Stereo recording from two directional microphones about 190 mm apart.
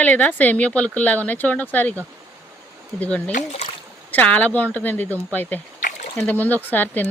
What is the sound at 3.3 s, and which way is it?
Speech, 35° left (ahead or behind).